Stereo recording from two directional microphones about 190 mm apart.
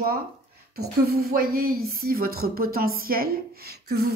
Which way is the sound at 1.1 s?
50° right (ahead or behind).